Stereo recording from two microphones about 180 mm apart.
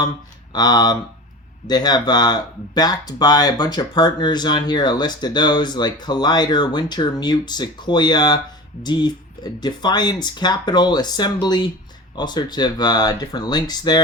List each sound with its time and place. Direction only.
0.5 s speech: 20° left (ahead or behind)